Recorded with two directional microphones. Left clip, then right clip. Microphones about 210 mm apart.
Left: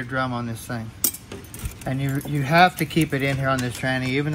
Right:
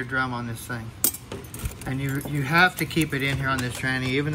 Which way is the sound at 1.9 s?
15° left (ahead or behind).